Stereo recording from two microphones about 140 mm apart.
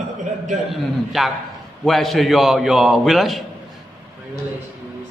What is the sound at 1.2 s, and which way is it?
A man's voice, centre (ahead or behind).